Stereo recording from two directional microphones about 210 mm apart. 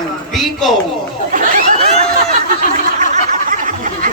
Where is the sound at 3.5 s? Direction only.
35° right (ahead or behind).